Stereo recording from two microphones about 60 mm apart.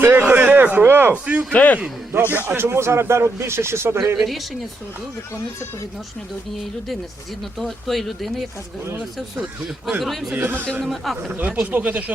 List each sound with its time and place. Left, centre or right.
0.0 s a sound: right
1.3 s speech: centre
1.5 s a man's voice: left
2.1 s a man's voice: right
2.6 s speech: right
4.2 s speech: centre
6.6 s speech: centre
10.3 s a man's voice: right
10.8 s speech: centre
11.3 s speech: right